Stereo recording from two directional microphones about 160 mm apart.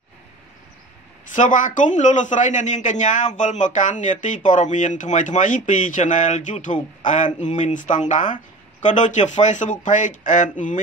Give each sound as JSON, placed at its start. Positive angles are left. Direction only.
{"t": 1.3, "sound": "a man's voice", "side_deg": 55}